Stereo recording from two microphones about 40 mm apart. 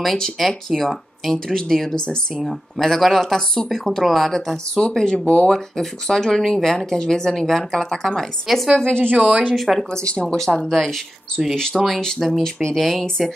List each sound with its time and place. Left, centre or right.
0.4 s speech: centre
4.7 s speech: centre
5.5 s speech: centre
8.7 s speech: left
9.1 s speech: right
9.5 s speech: centre